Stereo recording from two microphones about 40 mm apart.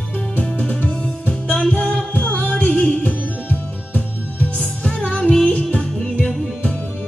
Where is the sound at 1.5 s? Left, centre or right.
Centre.